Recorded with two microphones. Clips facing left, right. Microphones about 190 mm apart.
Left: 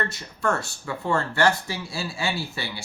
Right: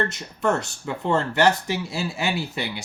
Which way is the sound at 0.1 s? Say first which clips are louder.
Right 3 dB; 20° right (ahead or behind).